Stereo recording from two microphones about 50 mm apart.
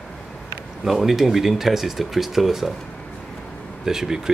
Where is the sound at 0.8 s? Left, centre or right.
Centre.